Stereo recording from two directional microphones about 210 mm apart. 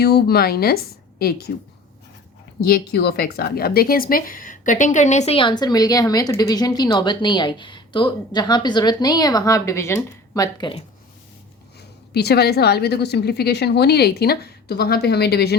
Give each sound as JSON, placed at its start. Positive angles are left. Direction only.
{"t": 0.0, "sound": "a woman's voice", "side_deg": 50}
{"t": 2.6, "sound": "speech", "side_deg": 45}
{"t": 11.8, "sound": "a woman's voice", "side_deg": 50}